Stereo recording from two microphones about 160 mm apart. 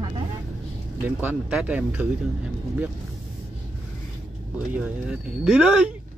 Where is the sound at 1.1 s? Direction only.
10° right (ahead or behind).